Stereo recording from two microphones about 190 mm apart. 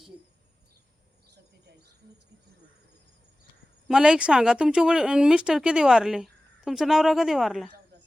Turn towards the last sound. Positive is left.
turn(degrees=0)  # may be behind; listen again after turning